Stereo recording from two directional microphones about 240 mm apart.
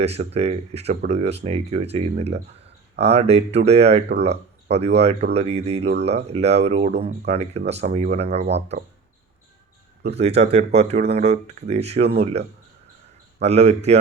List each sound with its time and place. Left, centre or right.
0.0 s speech: right
10.0 s speech: right